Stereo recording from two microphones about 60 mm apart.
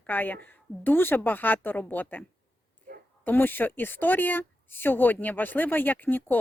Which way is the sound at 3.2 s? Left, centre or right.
Left.